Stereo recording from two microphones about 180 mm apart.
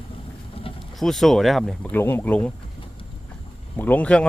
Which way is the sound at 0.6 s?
30° left (ahead or behind).